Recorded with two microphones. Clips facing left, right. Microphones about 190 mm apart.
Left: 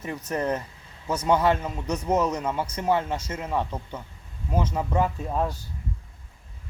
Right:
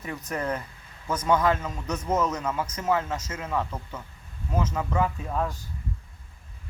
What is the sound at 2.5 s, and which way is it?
Speech, 30° left (ahead or behind).